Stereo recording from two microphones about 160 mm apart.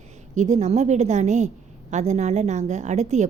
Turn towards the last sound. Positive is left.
turn(degrees=-45)  # may be behind; listen again after turning